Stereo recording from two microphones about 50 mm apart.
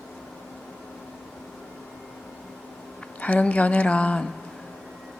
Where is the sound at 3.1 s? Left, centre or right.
Left.